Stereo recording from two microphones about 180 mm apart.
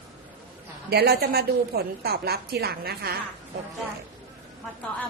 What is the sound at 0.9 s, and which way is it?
A woman's voice, 65° right (ahead or behind).